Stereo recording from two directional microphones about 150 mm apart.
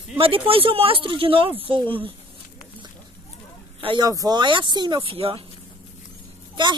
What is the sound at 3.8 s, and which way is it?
Speech, 30° right (ahead or behind).